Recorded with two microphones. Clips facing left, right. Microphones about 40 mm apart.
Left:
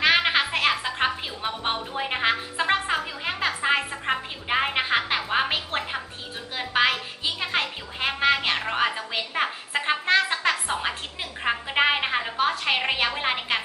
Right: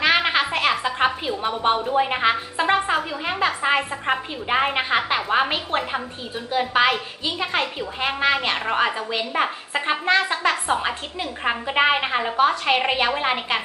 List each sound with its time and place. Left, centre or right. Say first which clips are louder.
0.0 s music: right 2 dB; centre
1.4 s speech: right 8 dB; centre
1.7 s speech: right 8 dB; centre
2.0 s speech: right 5 dB; centre